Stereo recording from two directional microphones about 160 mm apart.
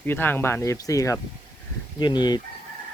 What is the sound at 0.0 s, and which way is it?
Speech, 15° left (ahead or behind).